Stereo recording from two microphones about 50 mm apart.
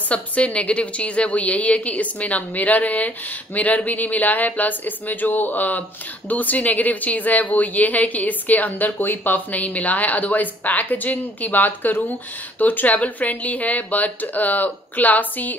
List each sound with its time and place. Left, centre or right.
0.1 s a woman's voice: left